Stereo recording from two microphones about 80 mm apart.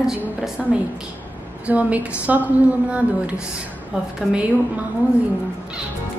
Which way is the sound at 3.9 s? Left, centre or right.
Centre.